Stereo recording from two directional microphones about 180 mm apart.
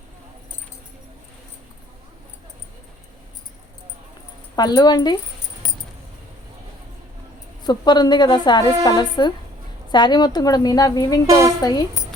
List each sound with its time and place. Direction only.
4.5 s a woman's voice: 20° left (ahead or behind)
7.6 s a woman's voice: 25° left (ahead or behind)
11.3 s speech: 15° right (ahead or behind)
11.6 s a woman's voice: 20° left (ahead or behind)